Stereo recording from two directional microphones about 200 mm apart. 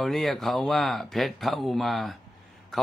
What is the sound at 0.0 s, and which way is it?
Speech, centre (ahead or behind).